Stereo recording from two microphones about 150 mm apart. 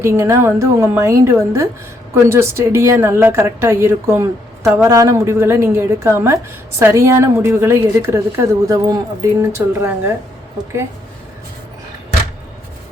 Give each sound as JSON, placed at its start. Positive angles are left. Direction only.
{"t": 0.0, "sound": "a woman's voice", "side_deg": -15}